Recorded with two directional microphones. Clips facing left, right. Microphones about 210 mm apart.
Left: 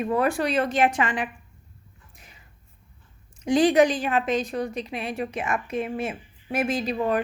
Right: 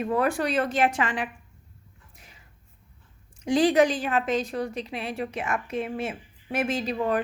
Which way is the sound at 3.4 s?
15° left (ahead or behind).